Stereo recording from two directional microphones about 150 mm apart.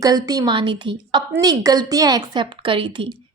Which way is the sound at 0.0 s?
25° right (ahead or behind).